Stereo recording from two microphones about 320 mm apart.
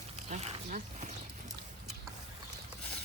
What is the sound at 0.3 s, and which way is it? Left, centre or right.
Speech, right.